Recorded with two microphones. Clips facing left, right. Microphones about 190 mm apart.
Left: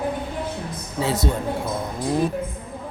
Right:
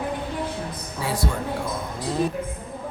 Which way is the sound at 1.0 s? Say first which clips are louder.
Left 3 dB; 20° left (ahead or behind).